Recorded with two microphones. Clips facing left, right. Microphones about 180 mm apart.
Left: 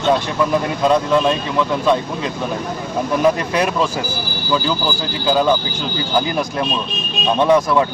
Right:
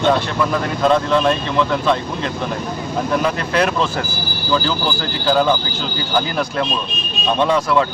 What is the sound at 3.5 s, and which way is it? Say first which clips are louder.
Speech: even; 15° left (ahead or behind).